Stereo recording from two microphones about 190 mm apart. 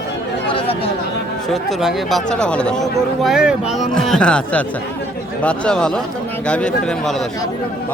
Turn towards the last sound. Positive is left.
turn(degrees=5)  # may be behind; listen again after turning